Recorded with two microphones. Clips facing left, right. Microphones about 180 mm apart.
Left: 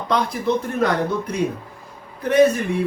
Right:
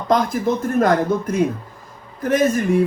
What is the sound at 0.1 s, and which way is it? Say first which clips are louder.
Speech: right 3 dB; 45° right (ahead or behind).